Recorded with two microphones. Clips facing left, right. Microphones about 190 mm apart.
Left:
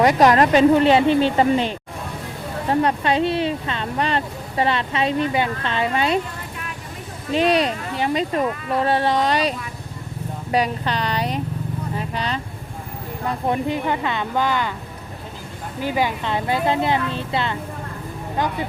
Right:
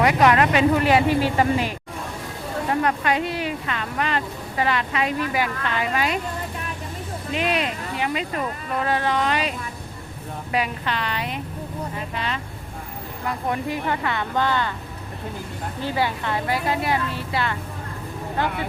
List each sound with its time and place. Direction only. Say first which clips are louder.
0.0 s speech: left 3 dB; 35° left (ahead or behind)
7.3 s speech: left 6 dB; 35° left (ahead or behind)
12.1 s vehicle: left 2 dB; 35° left (ahead or behind)
13.2 s speech: left 4 dB; 25° left (ahead or behind)
15.8 s speech: left 3 dB; 15° left (ahead or behind)